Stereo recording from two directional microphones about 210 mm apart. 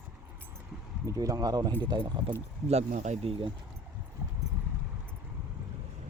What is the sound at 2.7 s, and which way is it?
Speech, 30° right (ahead or behind).